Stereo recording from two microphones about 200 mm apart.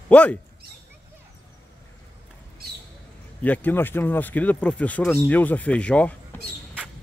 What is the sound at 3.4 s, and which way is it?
Speech, 10° left (ahead or behind).